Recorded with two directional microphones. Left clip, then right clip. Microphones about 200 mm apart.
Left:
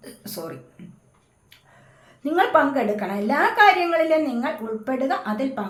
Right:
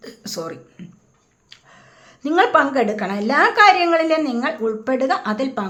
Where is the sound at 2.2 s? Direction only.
40° right (ahead or behind).